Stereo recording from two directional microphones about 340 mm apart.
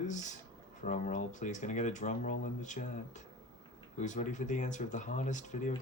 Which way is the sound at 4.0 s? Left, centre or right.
Left.